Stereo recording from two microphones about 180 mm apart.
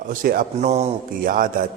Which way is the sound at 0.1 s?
50° right (ahead or behind).